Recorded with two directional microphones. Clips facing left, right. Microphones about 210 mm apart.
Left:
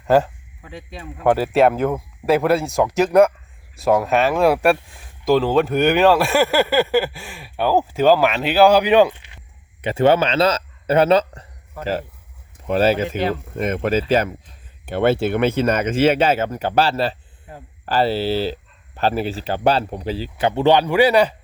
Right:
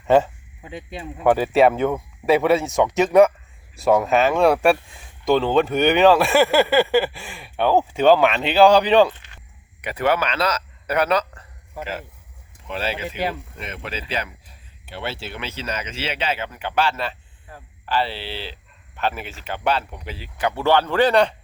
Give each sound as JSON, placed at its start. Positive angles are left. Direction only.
{"t": 0.1, "sound": "speech", "side_deg": 0}
{"t": 0.6, "sound": "speech", "side_deg": -20}
{"t": 1.2, "sound": "speech", "side_deg": 0}
{"t": 9.8, "sound": "speech", "side_deg": 25}
{"t": 12.6, "sound": "speech", "side_deg": 45}
{"t": 17.5, "sound": "speech", "side_deg": 20}
{"t": 17.8, "sound": "speech", "side_deg": 40}